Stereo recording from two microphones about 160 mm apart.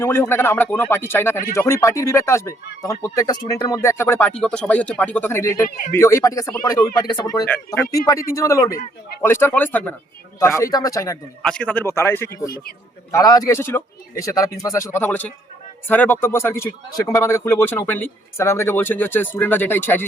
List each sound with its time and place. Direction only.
0.0 s speech: 15° left (ahead or behind)
7.4 s speech: 10° left (ahead or behind)
7.9 s speech: 20° left (ahead or behind)
8.7 s a man's voice: 65° left (ahead or behind)
9.2 s speech: 15° left (ahead or behind)
10.6 s speech: 20° left (ahead or behind)
11.4 s speech: 5° left (ahead or behind)